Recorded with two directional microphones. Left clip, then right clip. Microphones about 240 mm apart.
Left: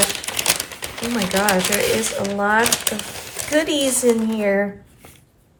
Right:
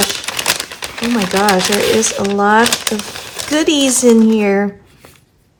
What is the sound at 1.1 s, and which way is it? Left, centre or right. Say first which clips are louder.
Speech: right 5 dB; centre.